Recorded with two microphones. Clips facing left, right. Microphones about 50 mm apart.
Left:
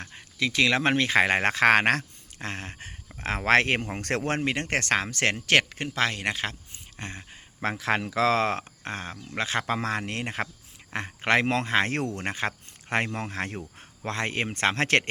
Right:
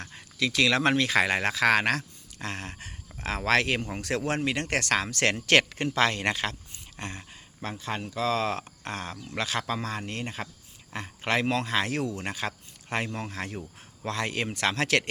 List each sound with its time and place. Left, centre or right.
0.0 s speech: left
2.5 s speech: left
3.9 s speech: left
4.4 s speech: left
7.6 s speech: left
8.6 s speech: left
9.6 s speech: left